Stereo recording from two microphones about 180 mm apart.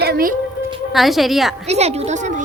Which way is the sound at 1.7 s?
35° right (ahead or behind).